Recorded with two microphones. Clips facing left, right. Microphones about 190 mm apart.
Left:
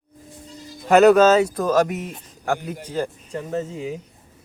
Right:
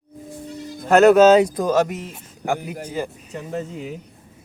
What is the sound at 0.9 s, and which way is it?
Speech, centre (ahead or behind).